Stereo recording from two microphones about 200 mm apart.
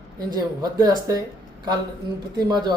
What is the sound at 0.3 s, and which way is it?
Speech, 20° right (ahead or behind).